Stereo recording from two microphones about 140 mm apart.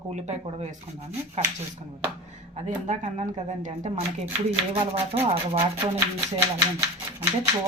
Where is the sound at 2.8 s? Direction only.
55° right (ahead or behind).